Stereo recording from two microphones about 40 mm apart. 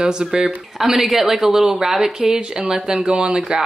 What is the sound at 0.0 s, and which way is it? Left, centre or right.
Speech, right.